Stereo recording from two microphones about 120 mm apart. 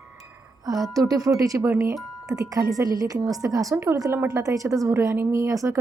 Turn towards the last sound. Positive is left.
turn(degrees=-25)  # may be behind; listen again after turning